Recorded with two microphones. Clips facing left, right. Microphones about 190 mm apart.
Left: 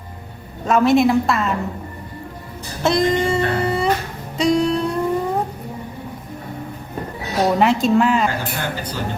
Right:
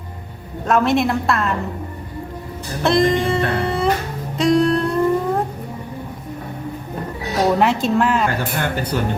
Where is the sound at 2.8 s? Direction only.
Centre (ahead or behind).